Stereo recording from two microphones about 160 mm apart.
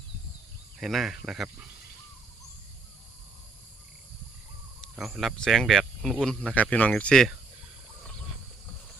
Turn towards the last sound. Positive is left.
turn(degrees=5)  # may be behind; listen again after turning